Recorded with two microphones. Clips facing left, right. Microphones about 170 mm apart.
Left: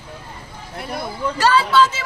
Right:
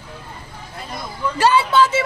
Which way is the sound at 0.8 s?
65° left (ahead or behind).